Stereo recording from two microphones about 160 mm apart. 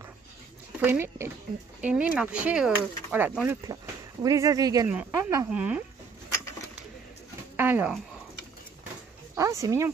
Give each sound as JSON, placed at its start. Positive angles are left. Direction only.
{"t": 0.7, "sound": "speech", "side_deg": -15}
{"t": 3.6, "sound": "speech", "side_deg": -20}
{"t": 7.5, "sound": "a sound", "side_deg": -15}
{"t": 9.3, "sound": "speech", "side_deg": -20}